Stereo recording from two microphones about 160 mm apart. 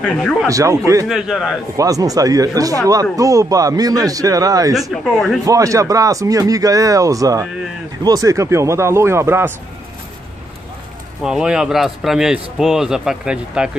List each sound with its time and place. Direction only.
0.0 s a man's voice: 5° left (ahead or behind)
0.5 s speech: 20° right (ahead or behind)
1.0 s a man's voice: 5° right (ahead or behind)
1.8 s speech: 20° right (ahead or behind)
4.9 s a man's voice: centre (ahead or behind)
5.4 s a man's voice: 20° right (ahead or behind)
11.2 s a man's voice: 5° right (ahead or behind)